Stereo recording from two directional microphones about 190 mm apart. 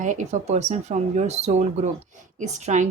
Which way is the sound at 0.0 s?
40° right (ahead or behind).